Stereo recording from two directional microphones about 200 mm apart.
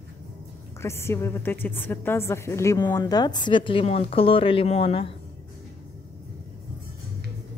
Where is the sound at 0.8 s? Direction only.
10° left (ahead or behind); by 5.1 s 30° left (ahead or behind).